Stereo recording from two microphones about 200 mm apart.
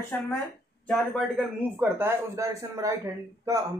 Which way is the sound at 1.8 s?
10° right (ahead or behind).